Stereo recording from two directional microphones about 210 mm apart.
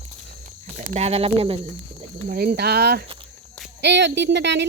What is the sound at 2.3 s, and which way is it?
A woman's voice, 45° right (ahead or behind).